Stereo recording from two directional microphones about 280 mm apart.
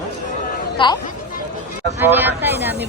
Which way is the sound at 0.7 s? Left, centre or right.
Centre.